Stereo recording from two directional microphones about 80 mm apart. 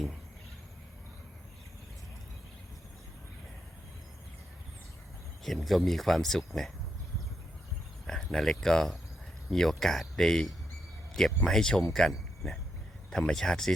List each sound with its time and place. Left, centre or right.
5.4 s speech: centre
8.0 s speech: centre
12.1 s a sound: centre
13.1 s speech: centre